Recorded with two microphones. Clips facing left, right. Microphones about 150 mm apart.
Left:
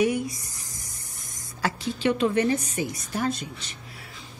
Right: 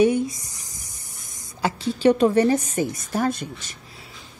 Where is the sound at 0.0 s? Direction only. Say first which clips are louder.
Right 5 dB; 25° right (ahead or behind).